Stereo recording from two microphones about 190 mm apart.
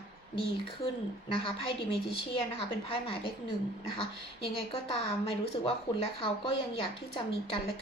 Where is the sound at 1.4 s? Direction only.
30° left (ahead or behind).